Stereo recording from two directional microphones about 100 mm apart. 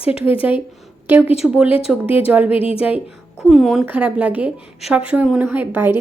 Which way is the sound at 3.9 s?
10° right (ahead or behind).